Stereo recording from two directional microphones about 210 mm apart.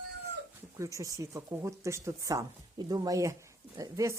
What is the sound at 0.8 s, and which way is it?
A woman's voice, 15° right (ahead or behind).